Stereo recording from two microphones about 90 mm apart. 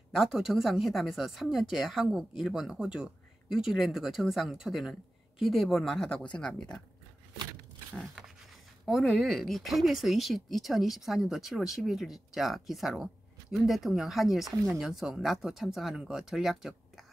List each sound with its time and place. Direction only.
0.1 s speech: centre (ahead or behind)
7.9 s a sound: 5° right (ahead or behind)
8.8 s speech: centre (ahead or behind)